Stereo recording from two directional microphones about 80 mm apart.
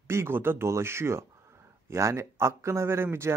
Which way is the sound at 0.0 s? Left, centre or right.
Right.